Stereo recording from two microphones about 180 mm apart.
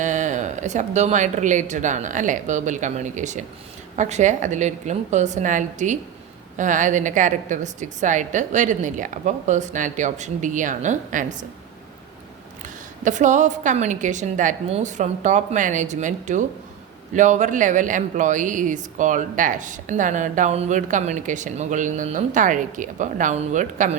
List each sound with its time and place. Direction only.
0.0 s speech: 40° right (ahead or behind)
12.6 s speech: 45° right (ahead or behind)